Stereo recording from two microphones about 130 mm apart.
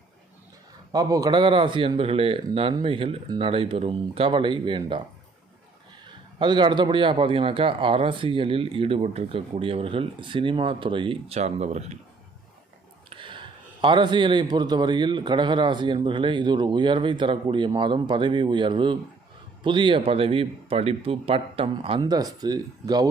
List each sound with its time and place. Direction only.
0.9 s a man's voice: 30° right (ahead or behind)
6.4 s a man's voice: 35° right (ahead or behind); by 11.9 s 60° right (ahead or behind)
13.1 s a man's voice: 40° right (ahead or behind)
22.0 s speech: 30° right (ahead or behind)